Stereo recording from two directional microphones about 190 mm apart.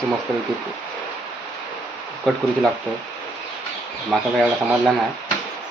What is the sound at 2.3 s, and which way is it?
Speech, centre (ahead or behind).